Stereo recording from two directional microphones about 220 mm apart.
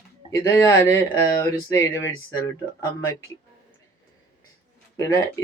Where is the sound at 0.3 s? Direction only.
15° left (ahead or behind).